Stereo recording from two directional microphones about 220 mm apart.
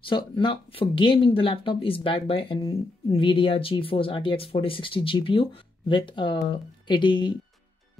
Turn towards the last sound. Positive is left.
turn(degrees=20)  # may be behind; listen again after turning